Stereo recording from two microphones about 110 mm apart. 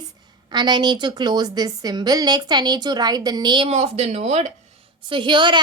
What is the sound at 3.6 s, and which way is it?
Speech, 75° right (ahead or behind).